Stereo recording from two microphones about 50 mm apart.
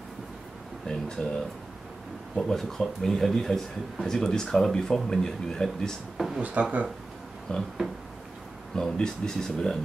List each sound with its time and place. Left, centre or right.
0.8 s a sound: centre
2.3 s speech: centre
6.4 s speech: right
7.5 s speech: centre
8.7 s speech: centre